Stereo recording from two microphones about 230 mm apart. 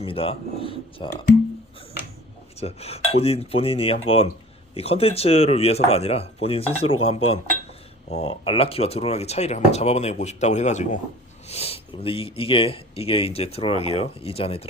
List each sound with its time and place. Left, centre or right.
0.0 s speech: left
2.6 s speech: left